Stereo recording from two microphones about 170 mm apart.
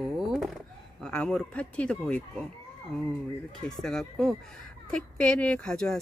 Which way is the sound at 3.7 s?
5° left (ahead or behind).